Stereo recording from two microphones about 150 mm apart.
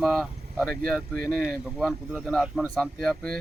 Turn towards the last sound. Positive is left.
turn(degrees=5)  # may be behind; listen again after turning